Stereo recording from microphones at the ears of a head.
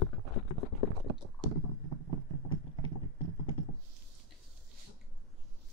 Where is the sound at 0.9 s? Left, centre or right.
Right.